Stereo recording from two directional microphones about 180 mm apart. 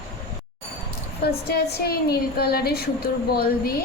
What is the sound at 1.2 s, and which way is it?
A woman's voice, 60° left (ahead or behind).